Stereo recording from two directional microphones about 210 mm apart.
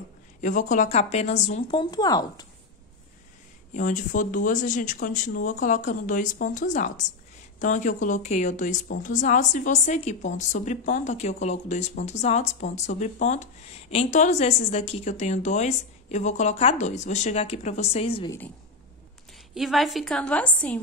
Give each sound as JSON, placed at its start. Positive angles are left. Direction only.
{"t": 0.4, "sound": "a woman's voice", "side_deg": 35}
{"t": 3.7, "sound": "a woman's voice", "side_deg": 35}
{"t": 19.5, "sound": "a woman's voice", "side_deg": 0}